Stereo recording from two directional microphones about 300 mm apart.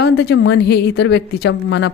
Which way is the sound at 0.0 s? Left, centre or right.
Left.